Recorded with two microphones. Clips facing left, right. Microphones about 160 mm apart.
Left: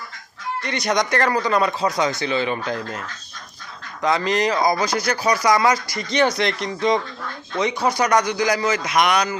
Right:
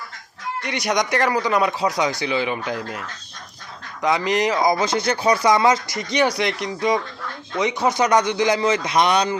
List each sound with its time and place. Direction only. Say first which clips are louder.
0.6 s speech: even; 15° right (ahead or behind)
4.0 s a man's voice: even; 15° right (ahead or behind)